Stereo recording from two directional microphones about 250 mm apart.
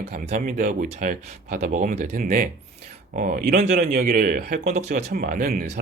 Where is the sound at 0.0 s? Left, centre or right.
Right.